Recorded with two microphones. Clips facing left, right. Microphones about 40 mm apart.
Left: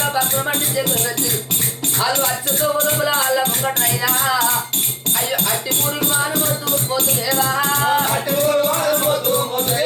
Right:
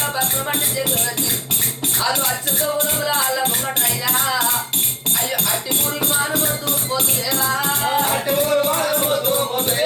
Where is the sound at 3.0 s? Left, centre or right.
Centre.